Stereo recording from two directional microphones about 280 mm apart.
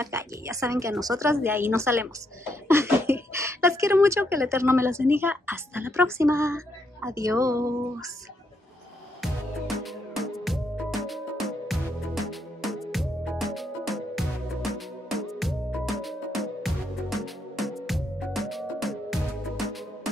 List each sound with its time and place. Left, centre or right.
0.0 s speech: centre
9.2 s music: centre